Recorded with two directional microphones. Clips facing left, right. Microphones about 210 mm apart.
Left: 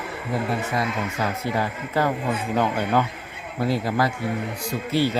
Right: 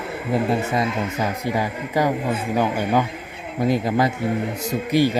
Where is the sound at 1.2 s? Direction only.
15° right (ahead or behind).